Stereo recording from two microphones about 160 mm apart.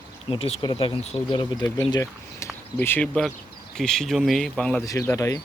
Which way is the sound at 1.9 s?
20° left (ahead or behind).